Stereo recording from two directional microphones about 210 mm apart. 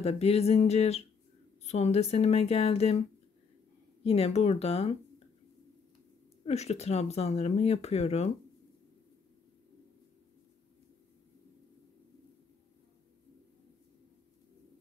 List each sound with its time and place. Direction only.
0.0 s speech: 30° left (ahead or behind)
4.0 s speech: 30° left (ahead or behind)
6.4 s speech: 30° left (ahead or behind)